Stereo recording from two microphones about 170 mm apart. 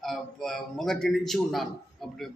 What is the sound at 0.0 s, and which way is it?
A man's voice, centre (ahead or behind).